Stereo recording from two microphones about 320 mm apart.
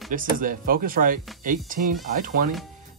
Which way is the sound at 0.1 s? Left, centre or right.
Right.